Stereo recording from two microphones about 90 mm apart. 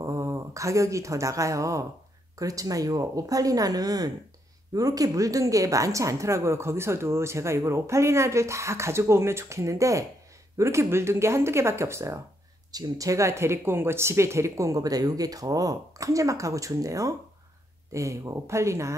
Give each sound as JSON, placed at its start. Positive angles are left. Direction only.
{"t": 0.0, "sound": "a woman's voice", "side_deg": -35}
{"t": 12.7, "sound": "a woman's voice", "side_deg": -40}